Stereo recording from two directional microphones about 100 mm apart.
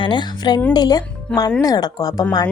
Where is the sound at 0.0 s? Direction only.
50° left (ahead or behind).